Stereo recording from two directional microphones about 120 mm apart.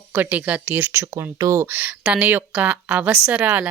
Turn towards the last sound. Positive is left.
turn(degrees=-15)  # may be behind; listen again after turning